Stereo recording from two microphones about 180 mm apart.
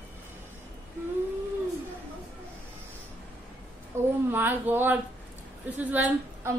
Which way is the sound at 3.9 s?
15° right (ahead or behind).